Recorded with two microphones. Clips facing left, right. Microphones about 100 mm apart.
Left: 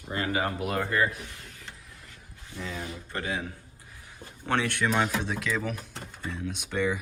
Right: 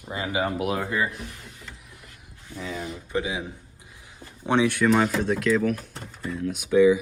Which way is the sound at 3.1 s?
10° right (ahead or behind).